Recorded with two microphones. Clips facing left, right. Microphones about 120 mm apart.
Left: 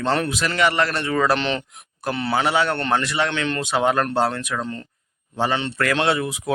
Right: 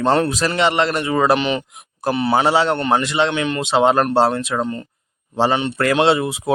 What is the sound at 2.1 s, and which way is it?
Speech, 25° right (ahead or behind).